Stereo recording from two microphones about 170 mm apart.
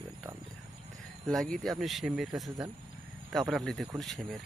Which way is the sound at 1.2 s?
5° left (ahead or behind).